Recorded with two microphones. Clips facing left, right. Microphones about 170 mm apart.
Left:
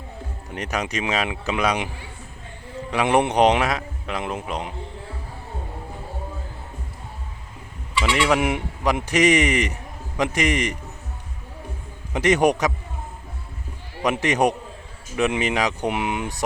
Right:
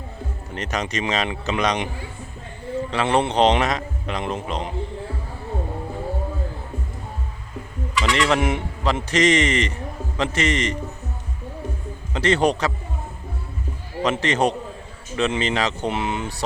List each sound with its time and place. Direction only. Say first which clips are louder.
0.5 s a man's voice: even; 10° left (ahead or behind)
2.9 s a man's voice: left 2 dB; 15° left (ahead or behind)
8.1 s a man's voice: even; 10° left (ahead or behind)
12.1 s a man's voice: left 1 dB; 15° left (ahead or behind)
14.0 s a man's voice: even; 15° left (ahead or behind)